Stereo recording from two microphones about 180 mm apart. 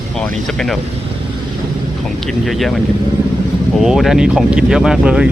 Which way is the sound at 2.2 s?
Centre (ahead or behind).